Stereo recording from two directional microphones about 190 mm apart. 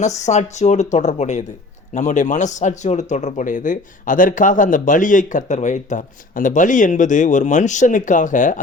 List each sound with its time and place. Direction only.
0.0 s a man's voice: 35° left (ahead or behind)